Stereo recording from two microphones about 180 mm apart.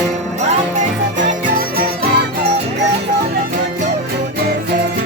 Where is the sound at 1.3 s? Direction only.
55° right (ahead or behind).